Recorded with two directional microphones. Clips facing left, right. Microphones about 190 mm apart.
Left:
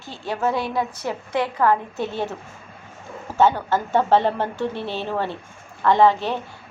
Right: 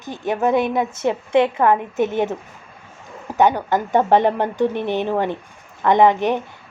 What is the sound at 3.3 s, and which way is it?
A woman's voice, 15° right (ahead or behind).